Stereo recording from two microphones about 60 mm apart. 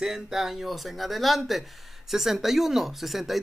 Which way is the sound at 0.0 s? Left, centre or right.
Centre.